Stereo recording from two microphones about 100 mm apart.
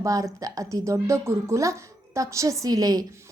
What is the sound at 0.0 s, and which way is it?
A woman's voice, 35° right (ahead or behind).